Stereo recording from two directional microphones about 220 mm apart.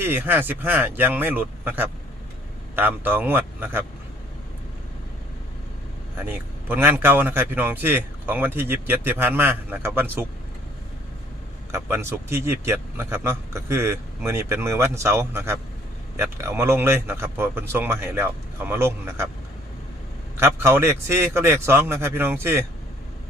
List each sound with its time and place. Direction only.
0.0 s a man's voice: 10° right (ahead or behind)
6.1 s a man's voice: 10° right (ahead or behind)
11.7 s a man's voice: 10° right (ahead or behind)
20.3 s a man's voice: 10° right (ahead or behind)